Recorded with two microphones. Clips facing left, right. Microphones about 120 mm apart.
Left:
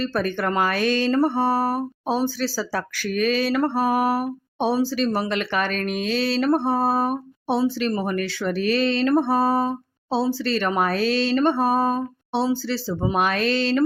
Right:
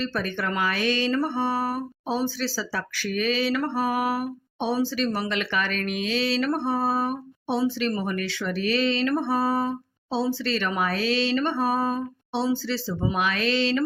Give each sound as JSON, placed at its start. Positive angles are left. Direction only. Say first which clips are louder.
{"t": 0.0, "sound": "speech", "louder": "left 4 dB", "side_deg": 45}